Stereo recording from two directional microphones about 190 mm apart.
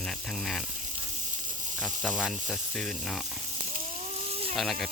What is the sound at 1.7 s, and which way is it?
Speech, centre (ahead or behind).